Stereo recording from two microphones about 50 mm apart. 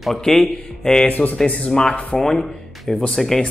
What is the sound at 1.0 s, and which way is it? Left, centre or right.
Speech, left.